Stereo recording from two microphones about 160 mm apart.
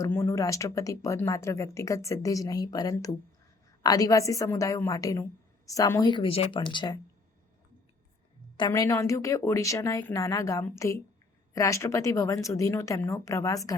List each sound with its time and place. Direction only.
0.0 s speech: 15° left (ahead or behind)
8.5 s speech: 25° left (ahead or behind)